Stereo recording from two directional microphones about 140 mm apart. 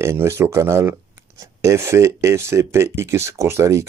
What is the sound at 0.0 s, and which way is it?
Speech, 20° right (ahead or behind).